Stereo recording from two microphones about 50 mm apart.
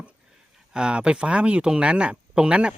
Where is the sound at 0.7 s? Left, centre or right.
Centre.